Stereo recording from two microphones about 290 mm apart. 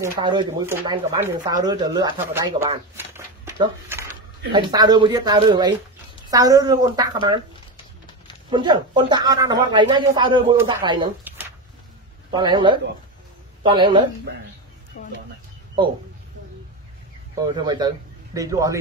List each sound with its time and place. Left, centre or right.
0.0 s speech: centre
3.1 s a sound: centre
4.5 s speech: centre
8.5 s speech: centre
15.0 s speech: left
17.6 s speech: centre